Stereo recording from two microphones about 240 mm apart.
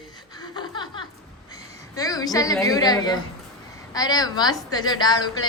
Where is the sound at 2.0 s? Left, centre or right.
Centre.